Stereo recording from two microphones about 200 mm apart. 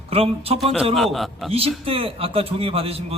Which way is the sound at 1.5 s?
30° right (ahead or behind).